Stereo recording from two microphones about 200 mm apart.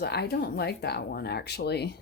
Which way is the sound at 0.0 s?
55° left (ahead or behind).